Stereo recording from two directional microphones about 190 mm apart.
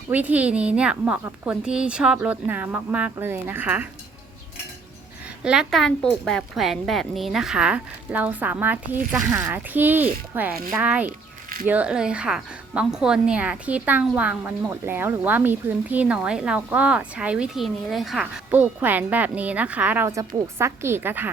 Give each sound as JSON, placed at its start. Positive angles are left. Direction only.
{"t": 0.1, "sound": "a woman's voice", "side_deg": -10}
{"t": 5.4, "sound": "a woman's voice", "side_deg": -5}